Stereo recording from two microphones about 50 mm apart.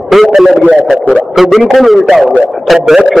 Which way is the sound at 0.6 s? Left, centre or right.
Centre.